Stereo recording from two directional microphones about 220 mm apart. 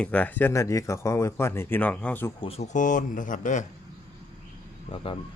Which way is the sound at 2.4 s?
30° left (ahead or behind).